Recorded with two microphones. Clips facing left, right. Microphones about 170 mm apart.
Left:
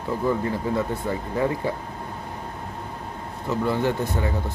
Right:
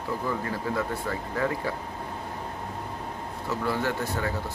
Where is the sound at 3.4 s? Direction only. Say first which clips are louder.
Left 5 dB; 20° left (ahead or behind).